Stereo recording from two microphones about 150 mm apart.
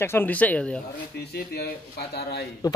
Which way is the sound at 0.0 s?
15° left (ahead or behind).